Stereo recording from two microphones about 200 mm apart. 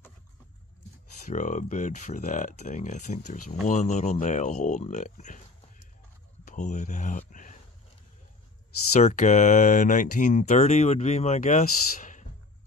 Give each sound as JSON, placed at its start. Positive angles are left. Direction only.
{"t": 1.2, "sound": "speech", "side_deg": 40}
{"t": 8.9, "sound": "speech", "side_deg": 35}